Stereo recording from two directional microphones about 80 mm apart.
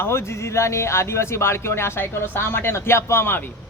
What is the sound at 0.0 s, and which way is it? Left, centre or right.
Speech, left.